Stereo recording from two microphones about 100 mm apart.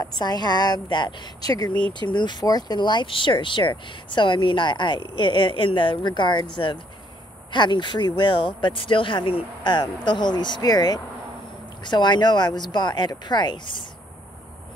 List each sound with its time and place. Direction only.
0.0 s speech: 45° left (ahead or behind)